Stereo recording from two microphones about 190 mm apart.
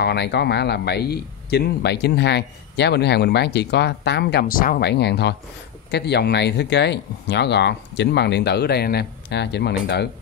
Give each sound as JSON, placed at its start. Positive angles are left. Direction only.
{"t": 0.0, "sound": "speech", "side_deg": 60}